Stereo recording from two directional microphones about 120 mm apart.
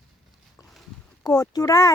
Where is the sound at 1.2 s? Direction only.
30° left (ahead or behind).